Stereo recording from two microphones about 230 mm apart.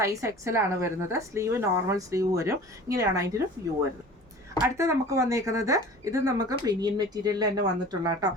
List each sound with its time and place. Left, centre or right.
0.0 s speech: centre
4.8 s speech: centre